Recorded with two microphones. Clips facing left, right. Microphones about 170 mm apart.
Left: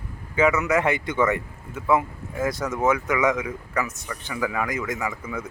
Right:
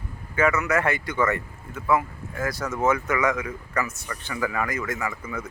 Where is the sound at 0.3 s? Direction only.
20° left (ahead or behind).